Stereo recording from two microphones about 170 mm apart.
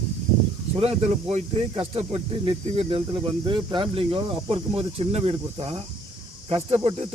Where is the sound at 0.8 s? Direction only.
35° right (ahead or behind).